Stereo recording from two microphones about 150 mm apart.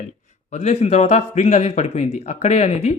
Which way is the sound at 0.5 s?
45° left (ahead or behind).